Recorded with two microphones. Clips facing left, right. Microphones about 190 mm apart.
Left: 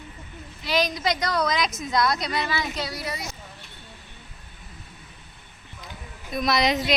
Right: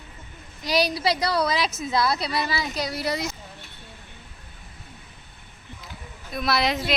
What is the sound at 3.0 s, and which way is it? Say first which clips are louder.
Speech: right 6 dB; 80° right.